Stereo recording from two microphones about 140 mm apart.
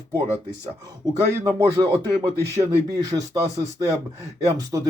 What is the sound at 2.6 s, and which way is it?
Speech, 25° right (ahead or behind).